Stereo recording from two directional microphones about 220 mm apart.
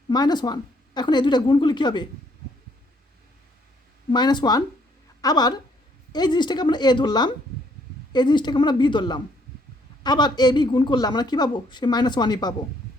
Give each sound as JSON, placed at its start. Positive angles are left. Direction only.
{"t": 0.1, "sound": "a woman's voice", "side_deg": 20}
{"t": 4.1, "sound": "a woman's voice", "side_deg": 20}